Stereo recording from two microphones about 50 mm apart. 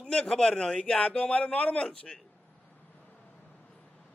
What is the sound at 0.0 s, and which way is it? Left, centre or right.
A man's voice, centre.